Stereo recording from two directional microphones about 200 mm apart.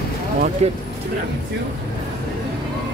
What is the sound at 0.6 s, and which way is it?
Speech, 35° right (ahead or behind).